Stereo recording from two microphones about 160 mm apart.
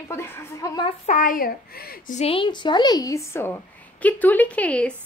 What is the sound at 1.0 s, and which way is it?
A child's voice, 55° left (ahead or behind).